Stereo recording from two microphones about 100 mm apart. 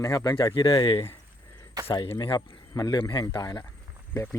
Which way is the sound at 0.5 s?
50° left (ahead or behind).